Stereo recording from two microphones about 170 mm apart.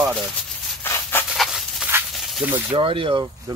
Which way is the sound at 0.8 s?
15° left (ahead or behind).